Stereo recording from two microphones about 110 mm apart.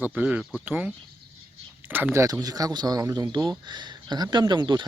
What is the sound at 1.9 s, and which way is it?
Speech, 15° right (ahead or behind).